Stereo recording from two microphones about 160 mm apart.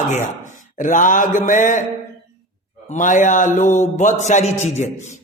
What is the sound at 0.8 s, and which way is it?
Speech, 55° left (ahead or behind).